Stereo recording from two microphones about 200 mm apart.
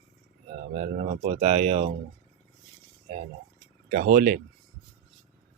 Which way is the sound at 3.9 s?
45° right (ahead or behind).